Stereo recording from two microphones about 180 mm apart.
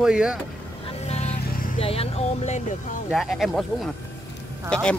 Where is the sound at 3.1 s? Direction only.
Centre (ahead or behind).